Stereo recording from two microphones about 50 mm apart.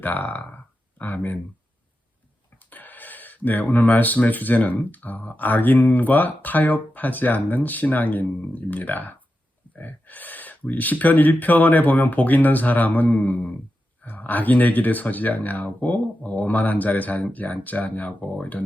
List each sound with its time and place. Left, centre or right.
0.0 s speech: left
2.6 s speech: left